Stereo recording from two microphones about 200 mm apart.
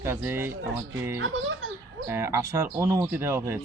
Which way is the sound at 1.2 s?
80° right.